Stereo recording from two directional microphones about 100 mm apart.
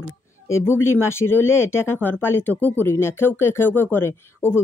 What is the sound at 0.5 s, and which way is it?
Speech, 25° left (ahead or behind).